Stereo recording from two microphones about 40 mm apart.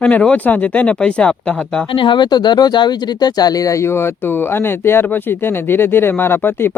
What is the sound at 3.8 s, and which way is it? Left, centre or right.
Speech, left.